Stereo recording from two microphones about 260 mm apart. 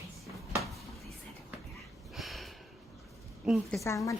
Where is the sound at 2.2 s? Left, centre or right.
Centre.